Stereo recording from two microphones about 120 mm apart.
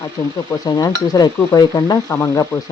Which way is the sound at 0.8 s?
30° left (ahead or behind).